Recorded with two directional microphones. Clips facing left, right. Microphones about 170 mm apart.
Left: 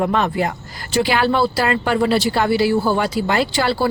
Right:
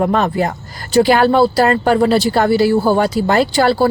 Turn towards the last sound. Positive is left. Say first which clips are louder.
# right 5 dB
turn(degrees=-45)  # may be behind; listen again after turning